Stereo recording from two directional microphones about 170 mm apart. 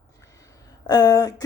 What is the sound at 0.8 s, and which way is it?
Speech, 20° left (ahead or behind).